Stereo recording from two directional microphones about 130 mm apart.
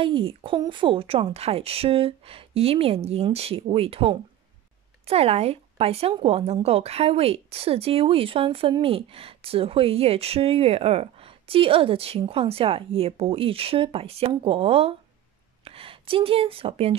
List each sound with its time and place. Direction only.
0.0 s speech: 45° right (ahead or behind)